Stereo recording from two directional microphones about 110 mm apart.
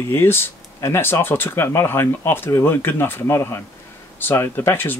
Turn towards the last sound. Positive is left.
turn(degrees=20)  # may be behind; listen again after turning